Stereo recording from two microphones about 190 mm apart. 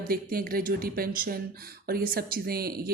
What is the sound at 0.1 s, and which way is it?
A woman's voice, 50° right (ahead or behind).